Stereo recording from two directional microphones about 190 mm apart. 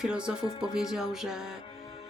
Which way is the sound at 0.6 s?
5° right (ahead or behind).